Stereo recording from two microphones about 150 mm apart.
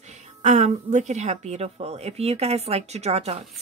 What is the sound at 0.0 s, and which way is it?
A woman's voice, 50° right (ahead or behind).